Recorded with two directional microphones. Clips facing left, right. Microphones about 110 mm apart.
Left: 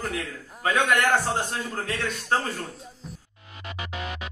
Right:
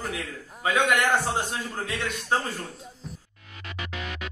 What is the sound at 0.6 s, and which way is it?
A man's voice, 5° right (ahead or behind).